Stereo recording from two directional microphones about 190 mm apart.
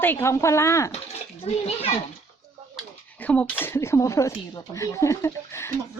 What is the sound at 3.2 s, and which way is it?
Speech, 5° left (ahead or behind).